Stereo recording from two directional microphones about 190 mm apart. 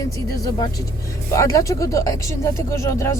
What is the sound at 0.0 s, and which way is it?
Speech, 20° left (ahead or behind).